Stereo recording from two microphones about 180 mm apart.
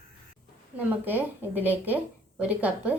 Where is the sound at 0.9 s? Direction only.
10° right (ahead or behind).